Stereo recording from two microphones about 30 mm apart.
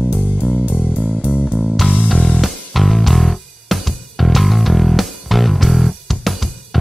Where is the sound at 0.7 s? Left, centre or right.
Right.